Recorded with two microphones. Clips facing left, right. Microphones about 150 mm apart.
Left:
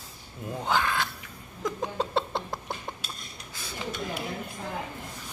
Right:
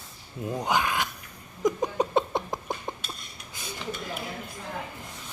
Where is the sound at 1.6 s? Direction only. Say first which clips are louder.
Right 5 dB; 15° right (ahead or behind).